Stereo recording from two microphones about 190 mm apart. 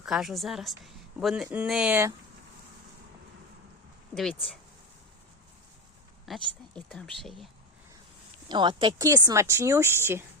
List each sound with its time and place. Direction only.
0.0 s a woman's voice: centre (ahead or behind)
4.1 s a woman's voice: centre (ahead or behind)
6.2 s a woman's voice: centre (ahead or behind)
8.4 s speech: 25° right (ahead or behind)